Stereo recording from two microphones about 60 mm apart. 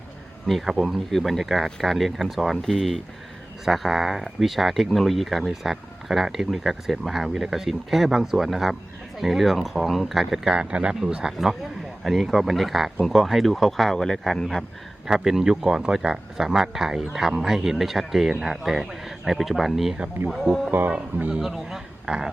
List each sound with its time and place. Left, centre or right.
0.4 s speech: centre
15.0 s speech: centre
20.7 s speech: right
20.9 s speech: right
21.4 s speech: centre